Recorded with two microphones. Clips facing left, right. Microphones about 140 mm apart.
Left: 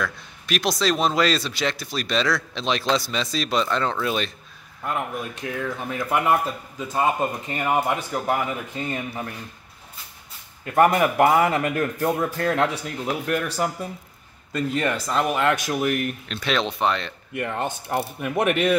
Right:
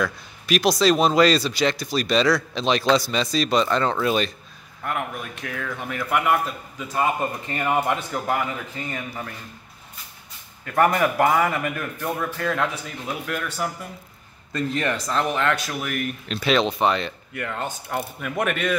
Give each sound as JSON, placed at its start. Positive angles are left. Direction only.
{"t": 0.0, "sound": "speech", "side_deg": 0}
{"t": 4.8, "sound": "a man's voice", "side_deg": 20}
{"t": 8.7, "sound": "speech", "side_deg": 25}
{"t": 10.6, "sound": "a man's voice", "side_deg": 25}
{"t": 14.5, "sound": "a man's voice", "side_deg": 5}
{"t": 16.3, "sound": "speech", "side_deg": 0}
{"t": 17.3, "sound": "speech", "side_deg": 20}